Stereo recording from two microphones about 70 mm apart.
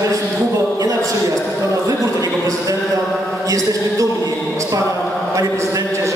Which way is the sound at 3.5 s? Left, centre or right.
Right.